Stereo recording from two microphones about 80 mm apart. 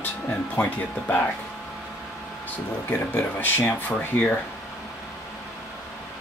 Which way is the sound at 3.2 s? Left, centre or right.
Left.